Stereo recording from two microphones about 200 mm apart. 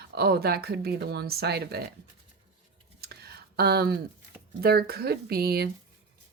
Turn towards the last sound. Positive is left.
turn(degrees=-50)  # may be behind; listen again after turning